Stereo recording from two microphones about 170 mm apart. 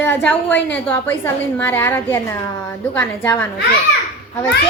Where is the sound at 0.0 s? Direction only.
10° left (ahead or behind).